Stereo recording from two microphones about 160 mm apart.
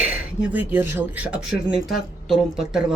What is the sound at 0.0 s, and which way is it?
Speech, 10° right (ahead or behind).